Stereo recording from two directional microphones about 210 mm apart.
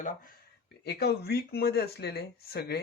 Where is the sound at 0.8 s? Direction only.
50° left (ahead or behind).